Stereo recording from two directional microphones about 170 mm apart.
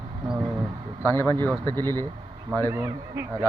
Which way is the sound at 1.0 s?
15° left (ahead or behind).